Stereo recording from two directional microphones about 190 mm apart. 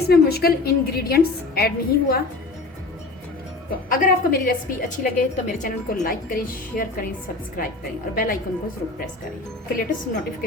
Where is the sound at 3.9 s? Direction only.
45° left (ahead or behind).